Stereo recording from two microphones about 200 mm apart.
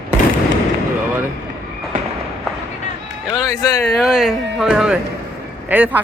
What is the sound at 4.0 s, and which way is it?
Speech, centre (ahead or behind).